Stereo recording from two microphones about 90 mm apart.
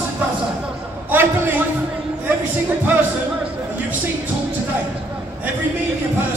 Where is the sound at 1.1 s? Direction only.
25° right (ahead or behind).